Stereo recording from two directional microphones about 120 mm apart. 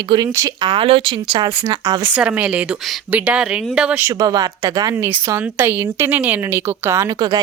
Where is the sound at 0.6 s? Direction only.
45° right (ahead or behind).